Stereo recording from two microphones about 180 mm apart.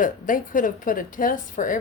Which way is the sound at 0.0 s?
50° left (ahead or behind).